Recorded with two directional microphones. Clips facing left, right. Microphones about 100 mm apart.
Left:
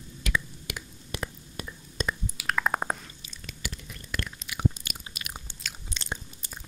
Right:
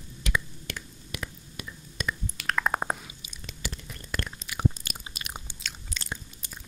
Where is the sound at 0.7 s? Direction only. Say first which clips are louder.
Even; 10° left (ahead or behind).